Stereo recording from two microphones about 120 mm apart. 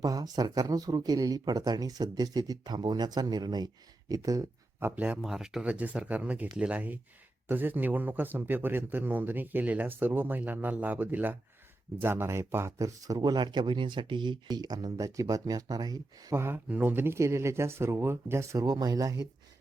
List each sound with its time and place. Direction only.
0.0 s speech: 30° right (ahead or behind)
4.9 s speech: 15° right (ahead or behind); by 16.3 s 30° right (ahead or behind)
16.3 s speech: 20° right (ahead or behind)
18.6 s speech: 35° right (ahead or behind)